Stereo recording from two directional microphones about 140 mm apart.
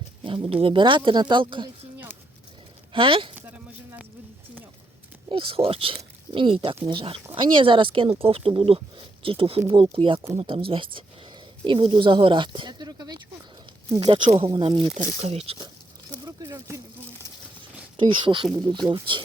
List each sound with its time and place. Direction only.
0.3 s speech: 40° right (ahead or behind)
2.9 s speech: 35° right (ahead or behind)
3.3 s a sound: 10° right (ahead or behind)
5.3 s speech: 40° right (ahead or behind)
10.2 s speech: 20° right (ahead or behind)
10.4 s speech: 40° right (ahead or behind)
15.2 s speech: 50° right (ahead or behind)
16.2 s a sound: 25° right (ahead or behind)
17.9 s speech: 35° right (ahead or behind)